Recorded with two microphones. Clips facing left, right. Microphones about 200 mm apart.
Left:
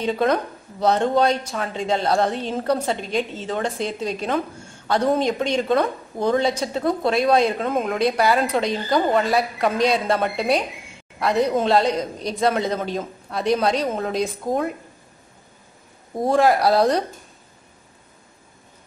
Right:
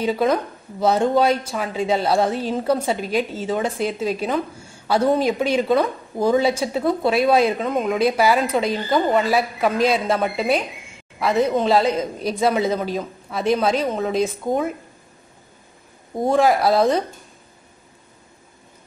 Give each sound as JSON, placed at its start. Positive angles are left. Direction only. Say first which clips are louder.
{"t": 0.0, "sound": "a woman's voice", "louder": "right 1 dB", "side_deg": -5}
{"t": 16.2, "sound": "a woman's voice", "louder": "even", "side_deg": 0}